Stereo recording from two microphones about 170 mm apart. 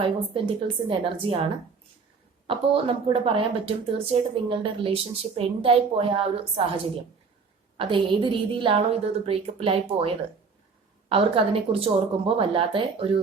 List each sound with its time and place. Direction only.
0.0 s speech: 30° right (ahead or behind)
2.5 s speech: 30° right (ahead or behind)
7.8 s speech: 30° right (ahead or behind)
11.1 s speech: 35° right (ahead or behind)